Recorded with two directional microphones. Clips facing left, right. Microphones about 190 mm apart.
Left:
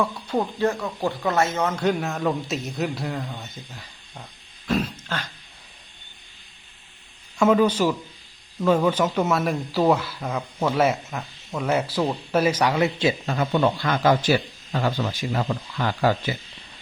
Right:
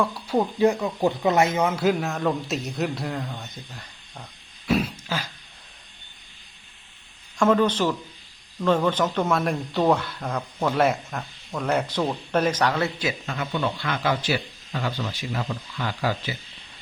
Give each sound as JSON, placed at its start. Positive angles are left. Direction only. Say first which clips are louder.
{"t": 0.0, "sound": "speech", "louder": "right 1 dB", "side_deg": -5}
{"t": 4.7, "sound": "a sound", "louder": "right 1 dB", "side_deg": -10}
{"t": 7.3, "sound": "a man's voice", "louder": "left 2 dB", "side_deg": 10}
{"t": 13.0, "sound": "speech", "louder": "left 6 dB", "side_deg": 30}
{"t": 13.5, "sound": "a man's voice", "louder": "left 5 dB", "side_deg": 50}